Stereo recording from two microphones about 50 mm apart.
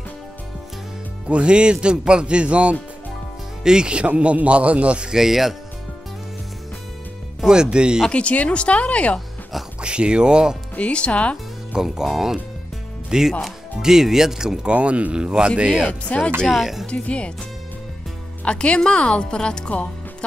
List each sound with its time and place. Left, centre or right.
1.3 s speech: right
5.1 s speech: centre
7.4 s speech: centre
8.1 s speech: left
9.8 s speech: right
10.8 s speech: left
11.8 s speech: centre
14.6 s speech: right
15.9 s speech: left
16.4 s speech: centre
16.8 s speech: left
18.4 s speech: left
19.7 s music: left